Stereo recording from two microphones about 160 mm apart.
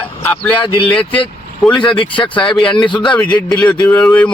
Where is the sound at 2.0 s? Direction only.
30° left (ahead or behind).